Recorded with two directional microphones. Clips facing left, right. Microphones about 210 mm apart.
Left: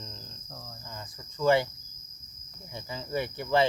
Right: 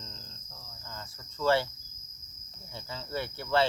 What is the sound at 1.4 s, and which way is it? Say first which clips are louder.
Cricket: left 3 dB; 15° left (ahead or behind).